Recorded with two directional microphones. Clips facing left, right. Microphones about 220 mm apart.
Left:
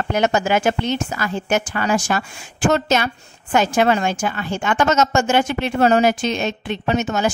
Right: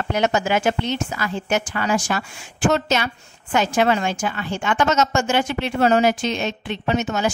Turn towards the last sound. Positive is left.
turn(degrees=45)  # may be behind; listen again after turning